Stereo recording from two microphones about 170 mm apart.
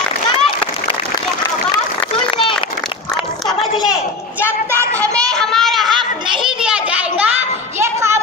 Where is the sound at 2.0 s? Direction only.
30° left (ahead or behind).